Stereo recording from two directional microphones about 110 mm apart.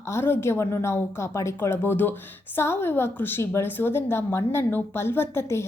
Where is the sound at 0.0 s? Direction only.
25° left (ahead or behind).